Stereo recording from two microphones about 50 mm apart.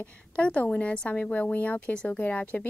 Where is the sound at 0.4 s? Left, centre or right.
Left.